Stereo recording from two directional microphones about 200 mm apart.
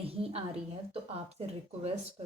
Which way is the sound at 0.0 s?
30° right (ahead or behind).